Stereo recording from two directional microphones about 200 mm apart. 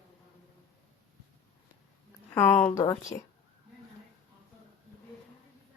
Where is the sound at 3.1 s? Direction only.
15° left (ahead or behind).